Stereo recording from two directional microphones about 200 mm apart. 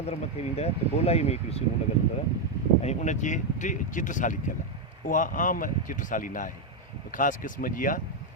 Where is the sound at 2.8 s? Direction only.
35° left (ahead or behind).